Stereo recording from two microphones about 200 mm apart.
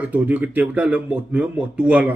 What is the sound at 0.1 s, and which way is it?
Speech, 10° right (ahead or behind).